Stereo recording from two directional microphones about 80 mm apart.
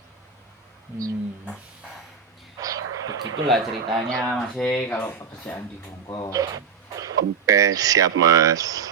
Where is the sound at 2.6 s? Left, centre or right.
Right.